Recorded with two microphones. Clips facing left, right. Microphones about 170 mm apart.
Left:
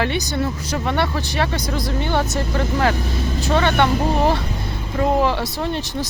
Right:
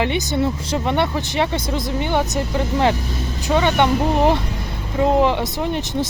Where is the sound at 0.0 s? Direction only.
20° right (ahead or behind).